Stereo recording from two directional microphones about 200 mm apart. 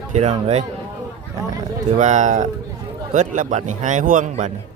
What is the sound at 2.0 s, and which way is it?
Speech, 35° right (ahead or behind).